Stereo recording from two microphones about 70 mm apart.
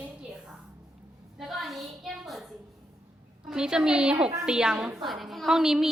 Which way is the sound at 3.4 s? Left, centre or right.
Centre.